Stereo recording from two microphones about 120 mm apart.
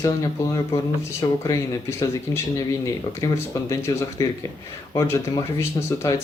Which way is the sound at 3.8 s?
25° left (ahead or behind).